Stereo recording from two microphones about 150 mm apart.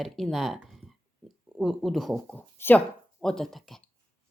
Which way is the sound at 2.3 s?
10° left (ahead or behind).